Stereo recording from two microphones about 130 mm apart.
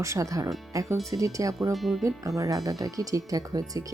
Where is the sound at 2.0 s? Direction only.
25° right (ahead or behind).